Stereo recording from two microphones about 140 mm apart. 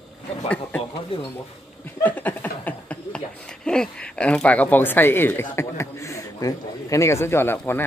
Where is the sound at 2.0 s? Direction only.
10° left (ahead or behind).